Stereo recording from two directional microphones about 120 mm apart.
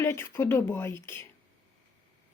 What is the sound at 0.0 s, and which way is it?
A woman's voice, 20° left (ahead or behind).